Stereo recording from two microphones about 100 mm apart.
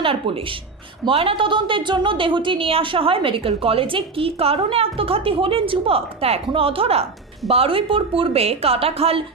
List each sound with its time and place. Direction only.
0.0 s a woman's voice: 65° right (ahead or behind)